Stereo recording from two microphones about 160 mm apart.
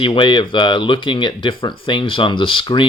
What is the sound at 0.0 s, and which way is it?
Speech, 30° left (ahead or behind).